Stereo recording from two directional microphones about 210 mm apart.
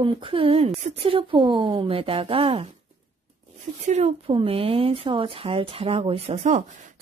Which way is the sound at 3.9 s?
30° right (ahead or behind).